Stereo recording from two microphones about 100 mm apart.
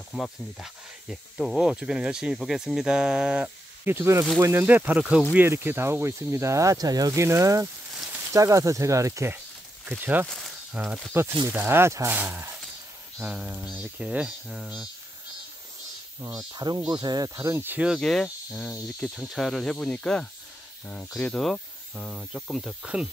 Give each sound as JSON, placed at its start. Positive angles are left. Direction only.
{"t": 0.1, "sound": "speech", "side_deg": 0}
{"t": 3.8, "sound": "speech", "side_deg": -25}
{"t": 5.5, "sound": "speech", "side_deg": -20}
{"t": 9.8, "sound": "speech", "side_deg": -20}
{"t": 10.2, "sound": "speech", "side_deg": 10}
{"t": 10.7, "sound": "speech", "side_deg": -10}
{"t": 11.4, "sound": "speech", "side_deg": -20}
{"t": 16.3, "sound": "speech", "side_deg": -45}
{"t": 17.8, "sound": "speech", "side_deg": -5}
{"t": 18.9, "sound": "cricket", "side_deg": 5}
{"t": 21.3, "sound": "speech", "side_deg": 0}